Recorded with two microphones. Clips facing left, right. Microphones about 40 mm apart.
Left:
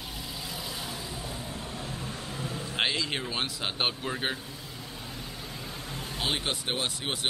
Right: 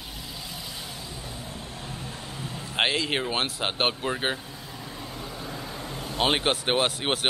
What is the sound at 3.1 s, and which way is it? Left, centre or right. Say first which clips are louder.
Speech: right 5 dB; right.